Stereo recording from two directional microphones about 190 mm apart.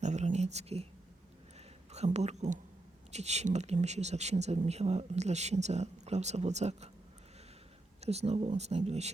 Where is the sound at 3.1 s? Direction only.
35° right (ahead or behind).